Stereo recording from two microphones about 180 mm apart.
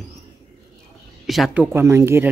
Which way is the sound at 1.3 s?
Centre (ahead or behind).